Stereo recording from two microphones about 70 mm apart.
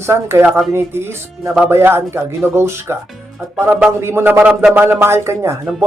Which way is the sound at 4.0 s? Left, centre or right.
Right.